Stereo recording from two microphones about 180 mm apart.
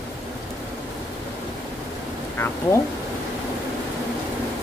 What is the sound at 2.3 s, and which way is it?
Speech, 15° left (ahead or behind).